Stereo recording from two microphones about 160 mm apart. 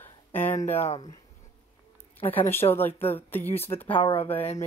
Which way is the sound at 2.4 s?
15° left (ahead or behind).